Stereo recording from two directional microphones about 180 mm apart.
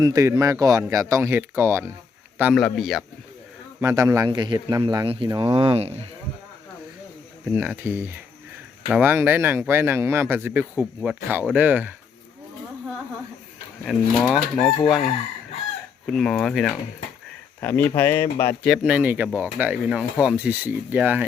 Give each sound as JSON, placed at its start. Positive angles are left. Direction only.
{"t": 0.0, "sound": "speech", "side_deg": -20}
{"t": 2.4, "sound": "chicken", "side_deg": 0}
{"t": 3.8, "sound": "a man's voice", "side_deg": -15}
{"t": 7.5, "sound": "speech", "side_deg": -10}
{"t": 13.8, "sound": "chicken", "side_deg": 0}
{"t": 16.0, "sound": "chicken", "side_deg": 5}
{"t": 17.6, "sound": "speech", "side_deg": 10}
{"t": 18.6, "sound": "speech", "side_deg": -5}